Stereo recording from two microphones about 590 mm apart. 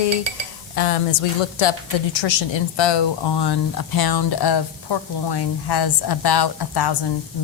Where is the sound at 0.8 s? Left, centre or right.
Left.